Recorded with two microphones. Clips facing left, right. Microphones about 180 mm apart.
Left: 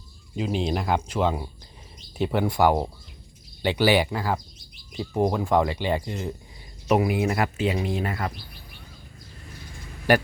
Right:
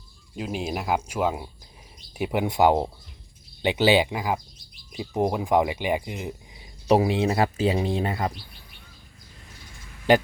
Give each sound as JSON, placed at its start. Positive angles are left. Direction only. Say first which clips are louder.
{"t": 0.3, "sound": "speech", "louder": "left 3 dB", "side_deg": -5}
{"t": 6.8, "sound": "speech", "louder": "right 2 dB", "side_deg": -30}
{"t": 10.1, "sound": "speech", "louder": "right 1 dB", "side_deg": -20}